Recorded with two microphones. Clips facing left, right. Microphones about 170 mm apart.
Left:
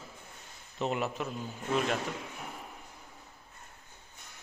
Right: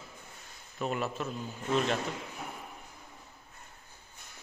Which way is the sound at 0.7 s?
20° left (ahead or behind).